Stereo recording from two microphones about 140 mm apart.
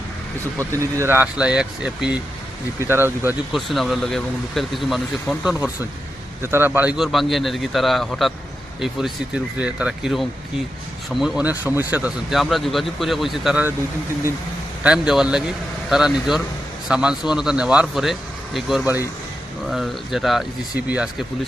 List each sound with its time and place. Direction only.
0.9 s speech: 15° right (ahead or behind)
3.5 s speech: centre (ahead or behind)
12.3 s speech: centre (ahead or behind)
14.8 s speech: 5° right (ahead or behind)